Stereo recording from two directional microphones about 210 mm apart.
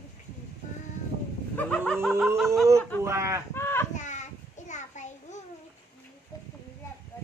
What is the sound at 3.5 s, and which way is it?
Livestock, 10° left (ahead or behind).